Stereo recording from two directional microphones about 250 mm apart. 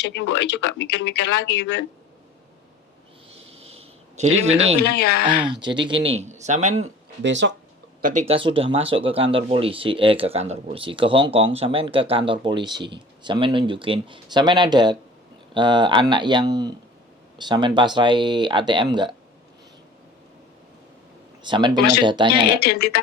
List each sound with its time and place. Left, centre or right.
0.0 s speech: left
3.3 s a sound: right
4.8 s speech: left
5.6 s speech: centre
6.8 s speech: right
8.3 s speech: right
21.4 s speech: centre
22.3 s speech: left